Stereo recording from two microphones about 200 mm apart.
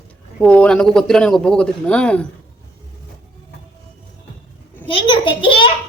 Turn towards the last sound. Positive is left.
turn(degrees=25)  # may be behind; listen again after turning